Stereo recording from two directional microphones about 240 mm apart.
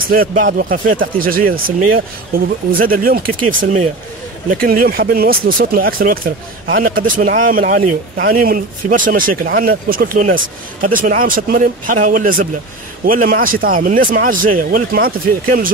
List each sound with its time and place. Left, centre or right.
0.1 s speech: right
4.5 s speech: right